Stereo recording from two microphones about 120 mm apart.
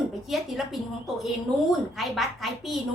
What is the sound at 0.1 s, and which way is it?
A woman's voice, centre (ahead or behind).